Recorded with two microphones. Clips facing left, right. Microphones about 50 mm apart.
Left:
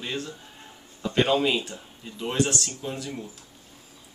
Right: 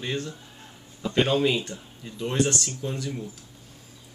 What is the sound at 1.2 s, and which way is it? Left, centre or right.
Speech, centre.